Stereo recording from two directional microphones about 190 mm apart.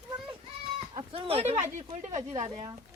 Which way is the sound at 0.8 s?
30° right (ahead or behind).